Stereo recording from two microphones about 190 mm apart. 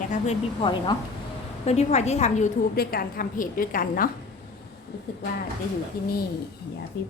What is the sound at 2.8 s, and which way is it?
A woman's voice, 50° left (ahead or behind).